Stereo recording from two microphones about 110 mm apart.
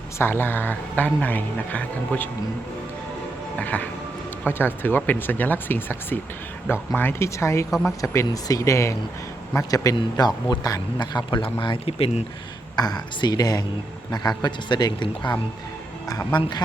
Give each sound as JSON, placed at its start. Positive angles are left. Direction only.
{"t": 0.2, "sound": "speech", "side_deg": 20}
{"t": 3.6, "sound": "speech", "side_deg": 15}
{"t": 7.7, "sound": "speech", "side_deg": 0}
{"t": 8.0, "sound": "a man's voice", "side_deg": 25}
{"t": 12.7, "sound": "a man's voice", "side_deg": 35}